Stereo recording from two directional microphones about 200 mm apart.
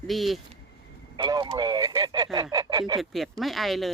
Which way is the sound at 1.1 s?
20° right (ahead or behind).